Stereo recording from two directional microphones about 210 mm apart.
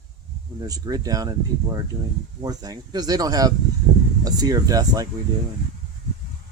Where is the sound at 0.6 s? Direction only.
20° right (ahead or behind).